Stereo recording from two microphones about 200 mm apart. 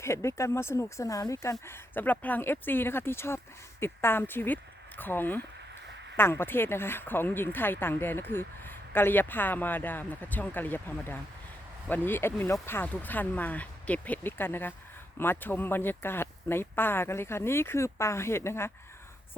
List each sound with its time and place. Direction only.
0.0 s speech: 15° left (ahead or behind)